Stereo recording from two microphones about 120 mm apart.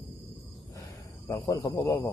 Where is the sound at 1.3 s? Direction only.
25° left (ahead or behind).